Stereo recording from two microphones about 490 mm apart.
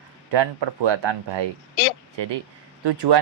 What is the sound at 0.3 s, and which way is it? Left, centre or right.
Speech, right.